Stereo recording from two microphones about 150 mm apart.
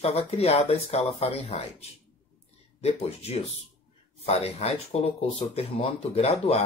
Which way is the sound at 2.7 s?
45° left (ahead or behind).